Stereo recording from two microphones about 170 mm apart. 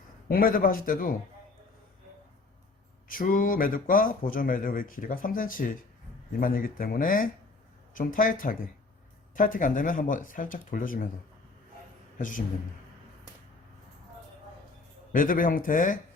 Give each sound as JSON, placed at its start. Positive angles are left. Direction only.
{"t": 0.3, "sound": "speech", "side_deg": 55}
{"t": 3.1, "sound": "speech", "side_deg": 55}
{"t": 15.1, "sound": "speech", "side_deg": 55}